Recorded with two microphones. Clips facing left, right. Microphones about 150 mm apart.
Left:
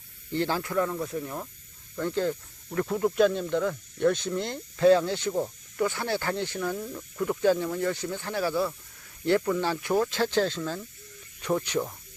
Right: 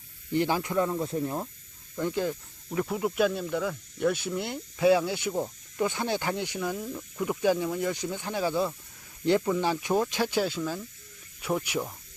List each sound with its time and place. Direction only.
0.3 s speech: 15° right (ahead or behind)
2.0 s speech: 15° right (ahead or behind)